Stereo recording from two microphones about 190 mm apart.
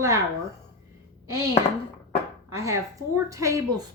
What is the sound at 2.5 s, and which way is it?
Speech, 15° right (ahead or behind).